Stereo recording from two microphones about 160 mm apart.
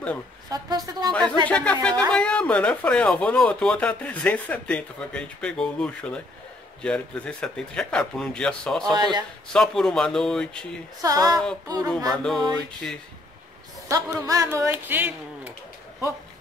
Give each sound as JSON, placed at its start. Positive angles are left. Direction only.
{"t": 0.5, "sound": "a woman's voice", "side_deg": -25}
{"t": 1.5, "sound": "speech", "side_deg": 10}
{"t": 8.9, "sound": "a woman's voice", "side_deg": -25}
{"t": 9.5, "sound": "speech", "side_deg": 5}
{"t": 11.0, "sound": "a woman's voice", "side_deg": -20}
{"t": 12.1, "sound": "speech", "side_deg": 0}
{"t": 13.8, "sound": "speech", "side_deg": -20}